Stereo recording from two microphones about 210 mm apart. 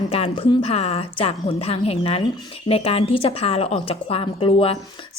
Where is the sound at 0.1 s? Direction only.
30° left (ahead or behind).